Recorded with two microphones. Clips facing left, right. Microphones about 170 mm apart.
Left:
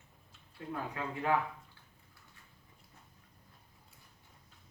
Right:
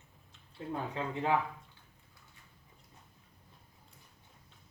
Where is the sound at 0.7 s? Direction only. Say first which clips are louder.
Right 2 dB; 25° right (ahead or behind).